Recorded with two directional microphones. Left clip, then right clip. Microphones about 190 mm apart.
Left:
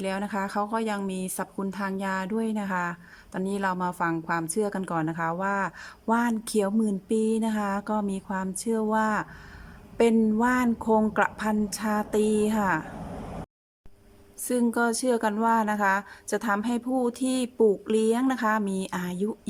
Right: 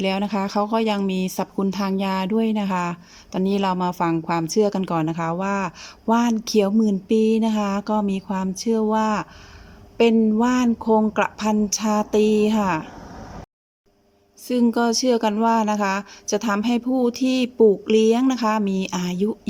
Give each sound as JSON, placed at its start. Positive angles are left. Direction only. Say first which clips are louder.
{"t": 0.0, "sound": "speech", "louder": "right 6 dB", "side_deg": -10}
{"t": 14.4, "sound": "speech", "louder": "right 5 dB", "side_deg": -5}